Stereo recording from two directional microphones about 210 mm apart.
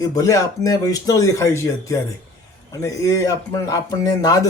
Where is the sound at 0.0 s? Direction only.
15° left (ahead or behind).